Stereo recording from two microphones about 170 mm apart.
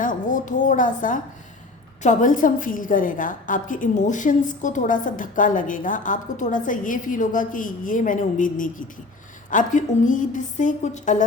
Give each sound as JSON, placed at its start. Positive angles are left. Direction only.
{"t": 0.0, "sound": "a woman's voice", "side_deg": 50}